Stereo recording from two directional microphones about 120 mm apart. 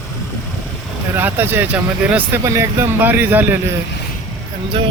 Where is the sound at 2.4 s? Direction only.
25° right (ahead or behind).